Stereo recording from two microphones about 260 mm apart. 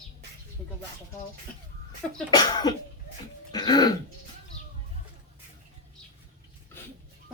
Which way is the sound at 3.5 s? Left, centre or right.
Centre.